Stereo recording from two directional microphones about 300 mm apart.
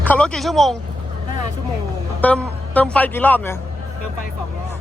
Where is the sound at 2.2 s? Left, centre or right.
Centre.